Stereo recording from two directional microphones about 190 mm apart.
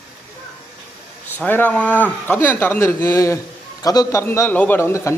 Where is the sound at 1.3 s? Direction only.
10° left (ahead or behind).